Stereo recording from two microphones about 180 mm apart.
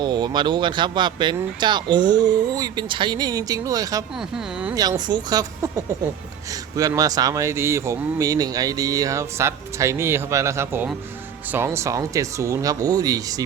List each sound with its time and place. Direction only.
0.0 s speech: 25° right (ahead or behind)
4.2 s speech: 5° right (ahead or behind)
4.7 s speech: 20° right (ahead or behind)